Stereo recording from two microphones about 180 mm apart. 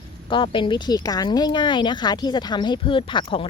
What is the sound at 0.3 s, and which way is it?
Speech, 25° left (ahead or behind).